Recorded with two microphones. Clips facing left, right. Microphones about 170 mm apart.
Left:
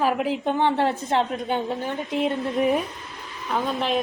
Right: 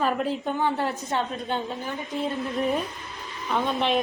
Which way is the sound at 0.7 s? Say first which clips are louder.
Left 5 dB; 90° left.